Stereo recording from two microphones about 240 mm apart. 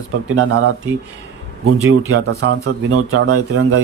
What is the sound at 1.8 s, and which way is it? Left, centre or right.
Speech, right.